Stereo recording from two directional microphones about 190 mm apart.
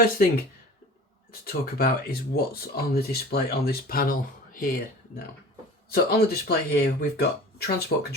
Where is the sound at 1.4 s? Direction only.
50° left (ahead or behind).